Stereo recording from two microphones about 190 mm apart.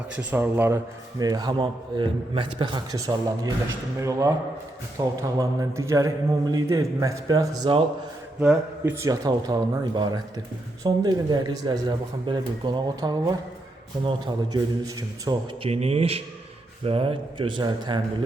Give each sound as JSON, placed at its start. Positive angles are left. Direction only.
{"t": 0.2, "sound": "a man's voice", "side_deg": -10}
{"t": 15.7, "sound": "speech", "side_deg": -30}